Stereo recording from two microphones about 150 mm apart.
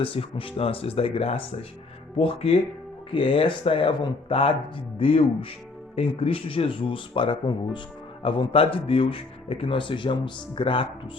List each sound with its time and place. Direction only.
0.0 s speech: 35° left (ahead or behind)